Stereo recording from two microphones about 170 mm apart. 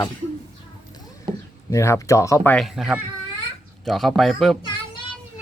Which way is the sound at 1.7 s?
15° left (ahead or behind).